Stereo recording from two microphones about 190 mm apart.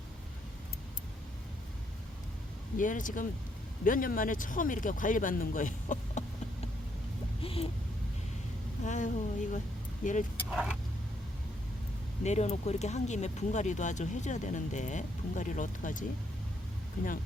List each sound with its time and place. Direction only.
2.7 s speech: 45° left (ahead or behind)
7.4 s a sound: 30° left (ahead or behind)
8.8 s speech: 40° left (ahead or behind)
10.5 s vehicle: 5° right (ahead or behind)
12.2 s speech: 35° left (ahead or behind)